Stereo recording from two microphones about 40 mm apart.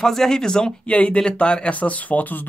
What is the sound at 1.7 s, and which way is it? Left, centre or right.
Speech, left.